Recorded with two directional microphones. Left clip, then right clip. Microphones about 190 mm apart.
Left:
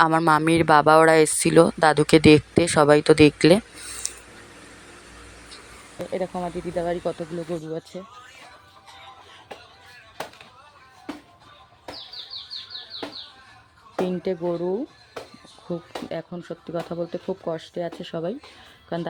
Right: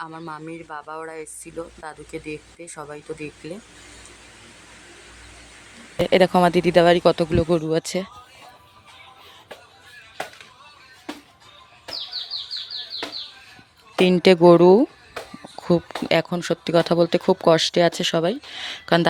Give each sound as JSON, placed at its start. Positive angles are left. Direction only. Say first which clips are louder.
{"t": 0.0, "sound": "speech", "louder": "left 16 dB", "side_deg": 45}
{"t": 6.1, "sound": "speech", "louder": "right 12 dB", "side_deg": -25}
{"t": 14.0, "sound": "speech", "louder": "right 12 dB", "side_deg": -20}